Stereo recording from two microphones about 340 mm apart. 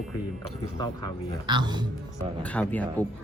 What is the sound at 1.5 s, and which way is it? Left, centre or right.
Speech, centre.